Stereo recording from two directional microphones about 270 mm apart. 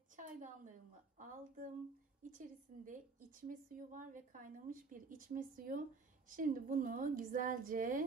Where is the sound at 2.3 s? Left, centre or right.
Right.